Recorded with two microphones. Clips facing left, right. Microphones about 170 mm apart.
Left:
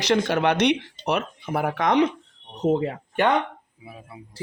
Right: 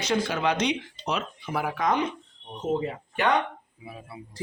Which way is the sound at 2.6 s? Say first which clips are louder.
Left 5 dB; 60° left (ahead or behind).